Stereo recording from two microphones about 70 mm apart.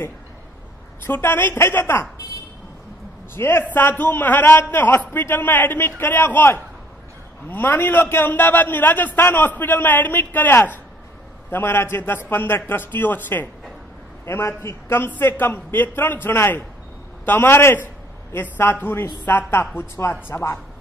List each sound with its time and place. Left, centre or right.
1.0 s a man's voice: left
3.3 s a man's voice: left
14.2 s a man's voice: left